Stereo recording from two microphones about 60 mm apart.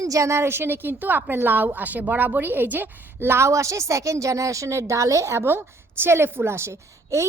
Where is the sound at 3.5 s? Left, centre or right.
Right.